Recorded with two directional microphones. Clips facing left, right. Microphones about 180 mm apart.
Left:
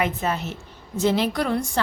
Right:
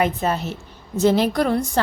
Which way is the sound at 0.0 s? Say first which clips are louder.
Right 4 dB; 35° right (ahead or behind).